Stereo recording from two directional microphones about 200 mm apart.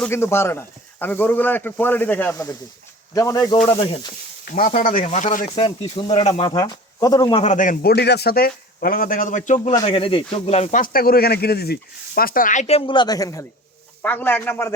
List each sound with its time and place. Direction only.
0.0 s speech: 15° left (ahead or behind)
4.7 s speech: 45° left (ahead or behind)
5.5 s speech: 25° left (ahead or behind)
7.4 s a man's voice: 40° left (ahead or behind)
9.7 s speech: 25° left (ahead or behind); by 14.8 s 10° left (ahead or behind)